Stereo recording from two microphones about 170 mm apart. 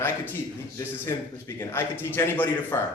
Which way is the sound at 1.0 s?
15° left (ahead or behind).